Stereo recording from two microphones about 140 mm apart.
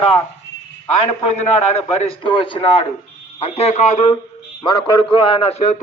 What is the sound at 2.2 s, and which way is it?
Speech, 40° left (ahead or behind).